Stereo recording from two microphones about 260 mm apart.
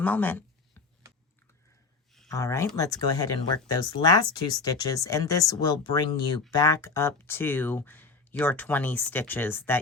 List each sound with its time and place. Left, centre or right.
0.0 s speech: centre
2.3 s speech: centre